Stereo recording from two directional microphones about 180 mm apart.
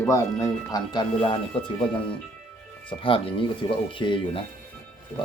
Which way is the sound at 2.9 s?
30° left (ahead or behind).